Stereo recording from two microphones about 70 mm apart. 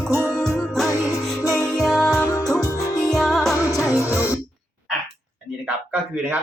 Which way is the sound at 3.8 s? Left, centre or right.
Left.